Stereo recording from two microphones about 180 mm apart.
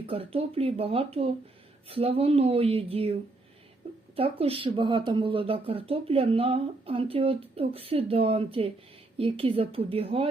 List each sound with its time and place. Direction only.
0.0 s speech: 30° right (ahead or behind)